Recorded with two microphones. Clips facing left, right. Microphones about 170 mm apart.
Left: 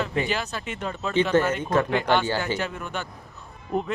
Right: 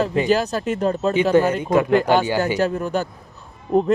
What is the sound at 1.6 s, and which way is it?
Speech, 10° right (ahead or behind).